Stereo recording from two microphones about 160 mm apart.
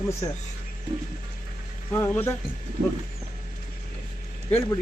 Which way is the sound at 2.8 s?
60° right (ahead or behind).